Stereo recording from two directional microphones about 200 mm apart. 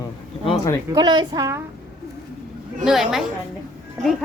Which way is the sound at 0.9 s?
20° right (ahead or behind).